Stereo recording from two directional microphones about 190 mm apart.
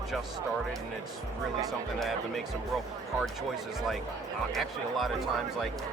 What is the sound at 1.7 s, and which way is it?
Speech, centre (ahead or behind).